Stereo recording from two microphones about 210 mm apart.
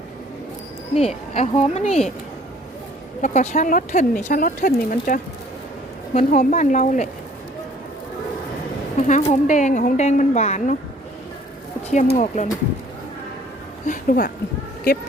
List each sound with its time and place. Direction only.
0.9 s speech: 30° left (ahead or behind)
3.2 s speech: 35° left (ahead or behind)
9.0 s speech: 35° left (ahead or behind)
11.9 s speech: 35° left (ahead or behind)
13.8 s speech: 40° left (ahead or behind)